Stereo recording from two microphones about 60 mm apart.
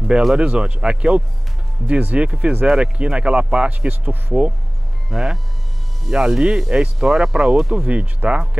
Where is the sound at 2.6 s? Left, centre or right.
Centre; by 4.4 s right.